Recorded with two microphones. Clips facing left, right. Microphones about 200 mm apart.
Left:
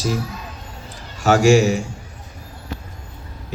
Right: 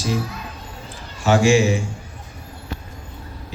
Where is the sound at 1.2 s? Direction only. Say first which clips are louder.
Left 2 dB; 40° left (ahead or behind).